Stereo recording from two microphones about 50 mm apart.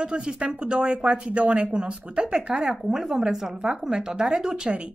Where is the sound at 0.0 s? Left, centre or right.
Centre.